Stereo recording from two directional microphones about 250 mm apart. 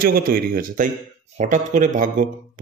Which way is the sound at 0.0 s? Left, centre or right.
Right.